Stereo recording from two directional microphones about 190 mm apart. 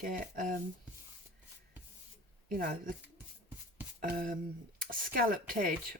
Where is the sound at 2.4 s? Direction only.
50° right (ahead or behind).